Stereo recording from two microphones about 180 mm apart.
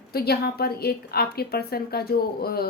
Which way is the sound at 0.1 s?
60° left (ahead or behind).